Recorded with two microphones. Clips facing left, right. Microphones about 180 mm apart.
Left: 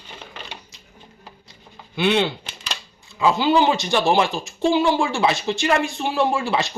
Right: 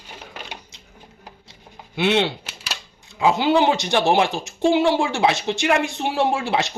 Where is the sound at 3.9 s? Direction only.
20° right (ahead or behind).